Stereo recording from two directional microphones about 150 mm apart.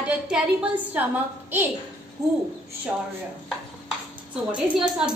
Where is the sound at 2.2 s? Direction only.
20° right (ahead or behind).